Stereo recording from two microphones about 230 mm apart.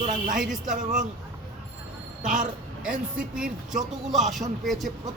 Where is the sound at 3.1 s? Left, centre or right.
Centre.